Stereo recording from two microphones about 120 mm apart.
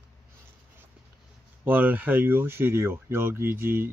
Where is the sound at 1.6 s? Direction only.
15° right (ahead or behind).